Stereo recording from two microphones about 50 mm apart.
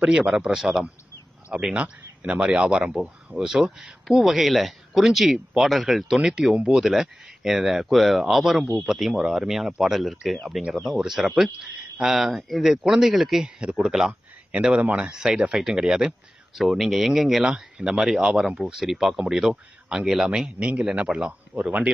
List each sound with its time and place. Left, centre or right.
0.5 s speech: centre
13.6 s speech: right; by 17.5 s centre
17.5 s speech: centre
20.5 s speech: right
21.1 s speech: centre